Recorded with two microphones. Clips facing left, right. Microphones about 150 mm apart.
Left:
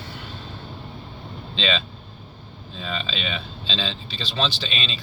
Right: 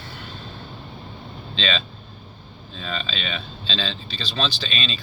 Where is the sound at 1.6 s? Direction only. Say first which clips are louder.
Left 1 dB; 20° left (ahead or behind).